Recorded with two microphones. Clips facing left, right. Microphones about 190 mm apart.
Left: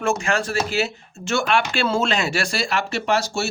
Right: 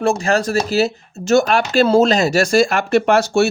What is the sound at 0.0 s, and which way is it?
Speech, 35° right (ahead or behind).